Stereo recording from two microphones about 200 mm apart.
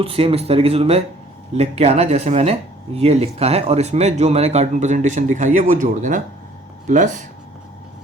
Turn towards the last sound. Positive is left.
turn(degrees=-40)  # may be behind; listen again after turning